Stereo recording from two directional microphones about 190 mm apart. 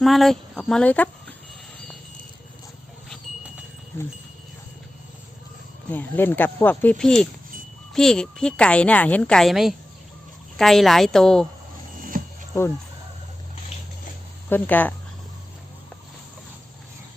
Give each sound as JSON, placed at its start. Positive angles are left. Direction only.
{"t": 0.0, "sound": "a woman's voice", "side_deg": 0}
{"t": 5.9, "sound": "a woman's voice", "side_deg": 10}
{"t": 12.0, "sound": "music", "side_deg": -45}
{"t": 14.5, "sound": "speech", "side_deg": 10}